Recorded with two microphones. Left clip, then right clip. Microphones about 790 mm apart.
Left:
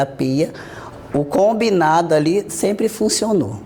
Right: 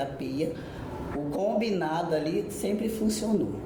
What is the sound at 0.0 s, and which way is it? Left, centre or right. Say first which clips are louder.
A woman's voice: left 12 dB; left.